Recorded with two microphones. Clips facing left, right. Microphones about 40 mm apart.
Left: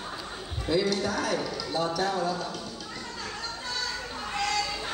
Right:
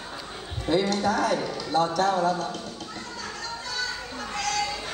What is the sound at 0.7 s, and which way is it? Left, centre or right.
A man's voice, right.